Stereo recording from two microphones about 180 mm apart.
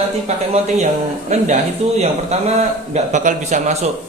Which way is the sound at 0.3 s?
35° right (ahead or behind).